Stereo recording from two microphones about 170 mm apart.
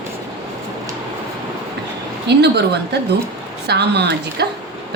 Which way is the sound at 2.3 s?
80° right.